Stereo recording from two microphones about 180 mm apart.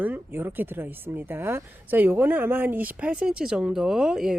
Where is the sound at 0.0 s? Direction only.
10° right (ahead or behind).